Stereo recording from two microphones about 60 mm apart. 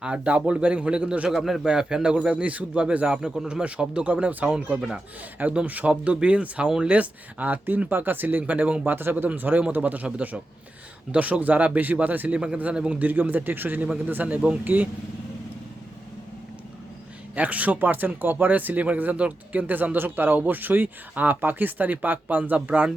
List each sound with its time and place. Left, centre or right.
0.0 s speech: right
1.3 s speech: centre; by 4.5 s right
5.6 s speech: right
8.9 s speech: right
12.7 s speech: centre
13.1 s speech: right
17.3 s speech: right